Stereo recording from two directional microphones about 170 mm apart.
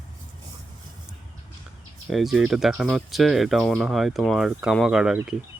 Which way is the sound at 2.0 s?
Centre (ahead or behind).